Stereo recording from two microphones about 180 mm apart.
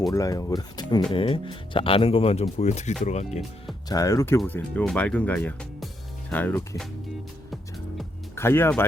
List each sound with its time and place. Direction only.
0.1 s speech: 20° left (ahead or behind); by 3.4 s 40° left (ahead or behind)
3.8 s speech: 20° left (ahead or behind)
8.4 s speech: 15° left (ahead or behind)